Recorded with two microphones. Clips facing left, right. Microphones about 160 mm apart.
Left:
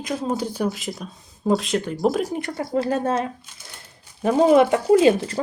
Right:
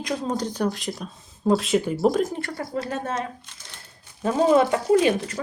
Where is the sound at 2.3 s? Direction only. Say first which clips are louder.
Left 5 dB; 20° left (ahead or behind).